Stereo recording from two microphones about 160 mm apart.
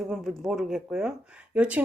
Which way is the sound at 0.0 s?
Centre (ahead or behind).